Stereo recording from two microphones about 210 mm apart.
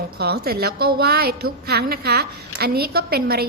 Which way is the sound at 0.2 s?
50° right (ahead or behind).